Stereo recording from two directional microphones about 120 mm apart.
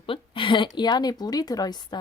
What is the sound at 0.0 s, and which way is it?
A woman's voice, 45° left (ahead or behind).